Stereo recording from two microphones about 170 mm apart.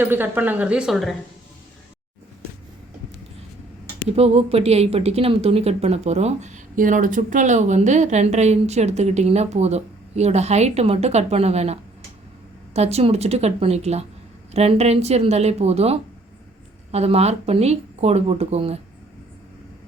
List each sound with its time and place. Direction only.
0.0 s speech: 10° right (ahead or behind)
4.1 s a woman's voice: 35° right (ahead or behind)